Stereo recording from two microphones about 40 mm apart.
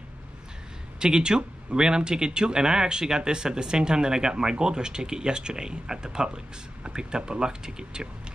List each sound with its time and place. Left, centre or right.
0.9 s speech: centre